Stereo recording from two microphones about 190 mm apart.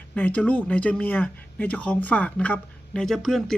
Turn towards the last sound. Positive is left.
turn(degrees=0)  # may be behind; listen again after turning